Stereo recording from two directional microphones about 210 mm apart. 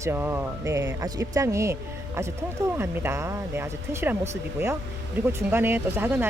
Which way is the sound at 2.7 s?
10° right (ahead or behind).